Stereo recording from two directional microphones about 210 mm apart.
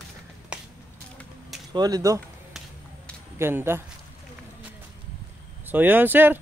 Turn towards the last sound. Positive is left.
turn(degrees=-10)  # may be behind; listen again after turning